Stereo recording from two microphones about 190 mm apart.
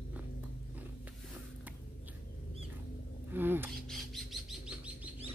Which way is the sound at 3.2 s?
10° right (ahead or behind).